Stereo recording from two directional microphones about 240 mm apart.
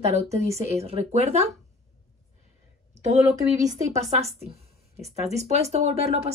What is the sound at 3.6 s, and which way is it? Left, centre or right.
Speech, right.